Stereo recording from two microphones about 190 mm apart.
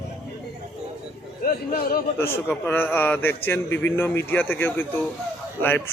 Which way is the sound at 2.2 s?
10° left (ahead or behind).